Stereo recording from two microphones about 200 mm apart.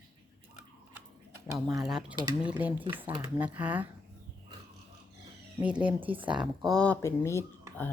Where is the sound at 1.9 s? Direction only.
5° right (ahead or behind).